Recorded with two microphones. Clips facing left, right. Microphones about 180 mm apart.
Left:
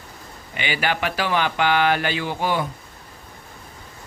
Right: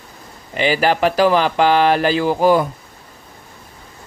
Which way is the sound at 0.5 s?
35° right (ahead or behind).